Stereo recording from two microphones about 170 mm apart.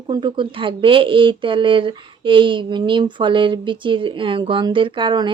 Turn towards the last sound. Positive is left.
turn(degrees=-25)  # may be behind; listen again after turning